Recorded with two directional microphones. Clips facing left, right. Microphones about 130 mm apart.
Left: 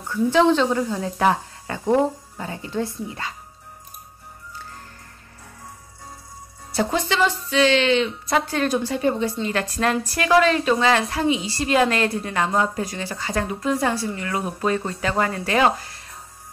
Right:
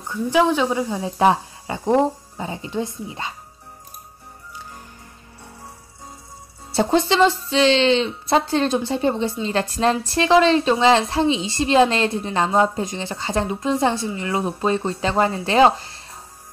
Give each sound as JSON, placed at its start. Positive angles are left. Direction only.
{"t": 0.1, "sound": "a woman's voice", "side_deg": -10}
{"t": 6.7, "sound": "a woman's voice", "side_deg": -30}